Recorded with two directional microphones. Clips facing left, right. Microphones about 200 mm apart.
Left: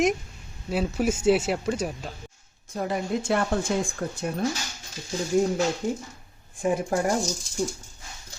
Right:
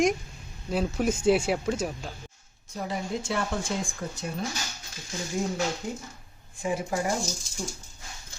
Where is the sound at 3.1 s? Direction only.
60° left (ahead or behind).